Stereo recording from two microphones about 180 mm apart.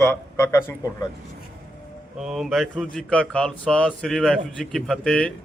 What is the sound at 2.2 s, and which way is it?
A man's voice, 5° right (ahead or behind).